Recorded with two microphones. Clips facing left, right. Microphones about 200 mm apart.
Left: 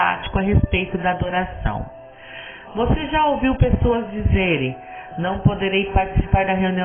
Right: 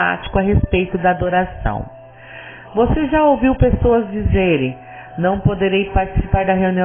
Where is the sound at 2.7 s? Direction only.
40° right (ahead or behind).